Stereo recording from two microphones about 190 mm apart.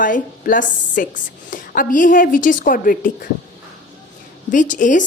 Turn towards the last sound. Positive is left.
turn(degrees=40)  # may be behind; listen again after turning